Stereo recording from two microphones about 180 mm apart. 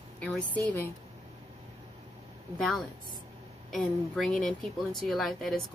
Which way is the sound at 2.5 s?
Centre (ahead or behind).